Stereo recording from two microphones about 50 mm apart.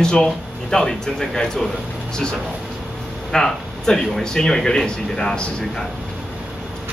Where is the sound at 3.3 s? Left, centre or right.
Centre.